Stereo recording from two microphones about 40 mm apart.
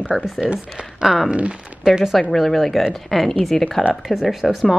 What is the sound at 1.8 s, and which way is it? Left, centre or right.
Speech, centre.